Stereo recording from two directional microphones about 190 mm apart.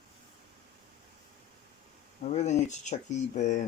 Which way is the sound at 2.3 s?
40° left (ahead or behind).